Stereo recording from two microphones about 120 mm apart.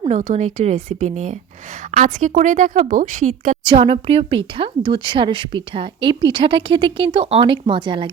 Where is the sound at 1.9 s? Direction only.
80° right.